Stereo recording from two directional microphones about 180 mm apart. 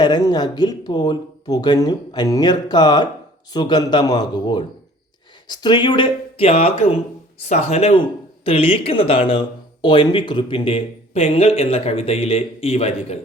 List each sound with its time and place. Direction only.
0.0 s a man's voice: 25° left (ahead or behind)